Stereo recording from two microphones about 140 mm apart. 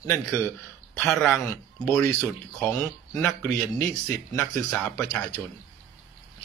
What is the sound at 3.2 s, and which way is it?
Speech, 20° left (ahead or behind).